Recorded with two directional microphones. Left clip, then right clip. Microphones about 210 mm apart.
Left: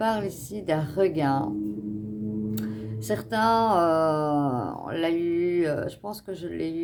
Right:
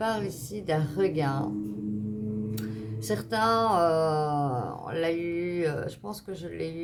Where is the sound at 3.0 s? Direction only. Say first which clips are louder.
Left 2 dB; 25° left (ahead or behind).